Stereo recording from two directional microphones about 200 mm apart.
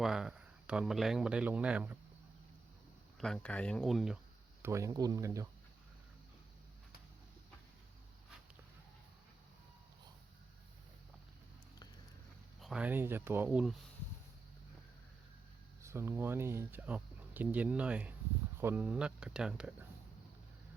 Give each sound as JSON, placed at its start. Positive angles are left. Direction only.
{"t": 0.0, "sound": "speech", "side_deg": 0}
{"t": 3.2, "sound": "speech", "side_deg": 5}
{"t": 4.6, "sound": "speech", "side_deg": -15}
{"t": 12.5, "sound": "speech", "side_deg": 0}
{"t": 15.8, "sound": "speech", "side_deg": -15}